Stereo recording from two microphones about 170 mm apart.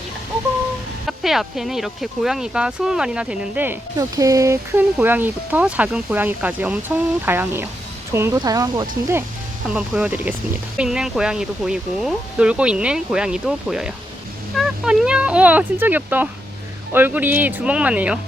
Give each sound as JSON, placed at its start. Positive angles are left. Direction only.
{"t": 1.0, "sound": "speech", "side_deg": 0}
{"t": 9.6, "sound": "speech", "side_deg": -5}